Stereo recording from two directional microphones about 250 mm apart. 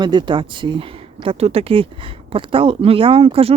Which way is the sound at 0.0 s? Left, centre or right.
Centre.